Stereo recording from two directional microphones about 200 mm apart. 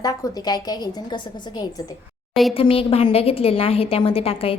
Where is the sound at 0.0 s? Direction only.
20° left (ahead or behind).